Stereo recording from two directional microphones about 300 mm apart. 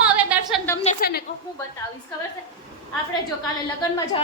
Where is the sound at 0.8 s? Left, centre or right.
Left.